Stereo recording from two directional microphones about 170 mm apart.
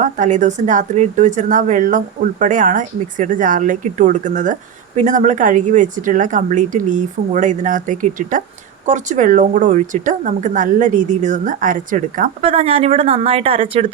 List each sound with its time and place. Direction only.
0.0 s speech: 45° right (ahead or behind)
12.4 s speech: 35° right (ahead or behind)